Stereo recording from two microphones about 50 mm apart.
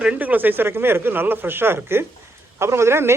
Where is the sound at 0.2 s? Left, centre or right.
Right.